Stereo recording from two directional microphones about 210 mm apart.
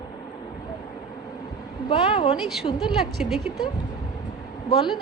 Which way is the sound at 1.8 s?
25° left (ahead or behind).